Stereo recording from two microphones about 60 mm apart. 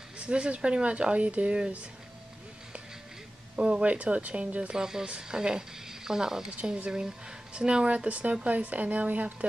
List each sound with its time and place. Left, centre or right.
0.2 s a woman's voice: centre
3.5 s speech: centre
6.5 s a woman's voice: centre